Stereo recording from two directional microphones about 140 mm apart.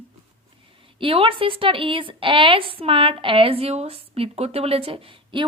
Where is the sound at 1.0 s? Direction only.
40° right (ahead or behind).